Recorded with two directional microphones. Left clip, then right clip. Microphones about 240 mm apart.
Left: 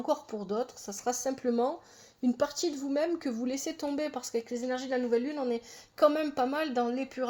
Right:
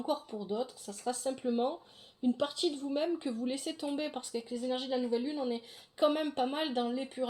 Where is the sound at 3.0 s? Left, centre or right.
Left.